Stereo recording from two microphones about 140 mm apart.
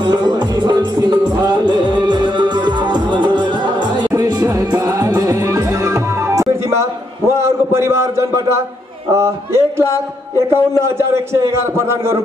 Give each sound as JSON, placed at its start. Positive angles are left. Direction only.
{"t": 0.0, "sound": "music", "side_deg": -30}
{"t": 4.1, "sound": "music", "side_deg": -25}
{"t": 7.3, "sound": "a sound", "side_deg": -20}
{"t": 10.5, "sound": "a man's voice", "side_deg": -20}